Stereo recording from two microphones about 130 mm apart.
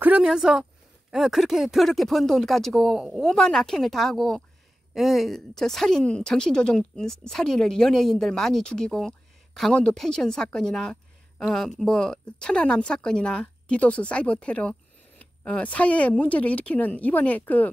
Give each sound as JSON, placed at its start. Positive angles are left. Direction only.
{"t": 0.0, "sound": "a woman's voice", "side_deg": -10}